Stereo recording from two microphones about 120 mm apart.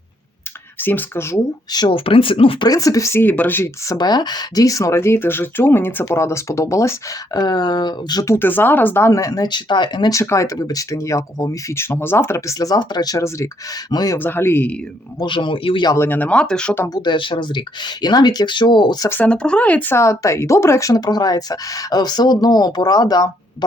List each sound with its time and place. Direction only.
0.8 s speech: 15° left (ahead or behind)
1.7 s speech: 35° left (ahead or behind)
2.0 s speech: 45° left (ahead or behind)
2.6 s speech: 30° left (ahead or behind)
3.9 s speech: 35° left (ahead or behind)
8.3 s speech: 15° left (ahead or behind)
12.5 s speech: 35° left (ahead or behind)
14.2 s speech: 20° left (ahead or behind)
15.2 s speech: 45° left (ahead or behind)
16.0 s speech: 15° left (ahead or behind)
16.9 s speech: 40° left (ahead or behind)
19.0 s speech: 20° left (ahead or behind); by 23.6 s 35° left (ahead or behind)